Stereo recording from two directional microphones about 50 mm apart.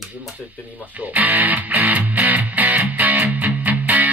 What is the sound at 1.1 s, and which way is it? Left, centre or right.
Music, right.